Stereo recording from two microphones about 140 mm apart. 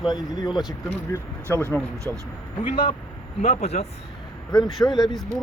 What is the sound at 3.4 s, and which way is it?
Speech, 50° left (ahead or behind).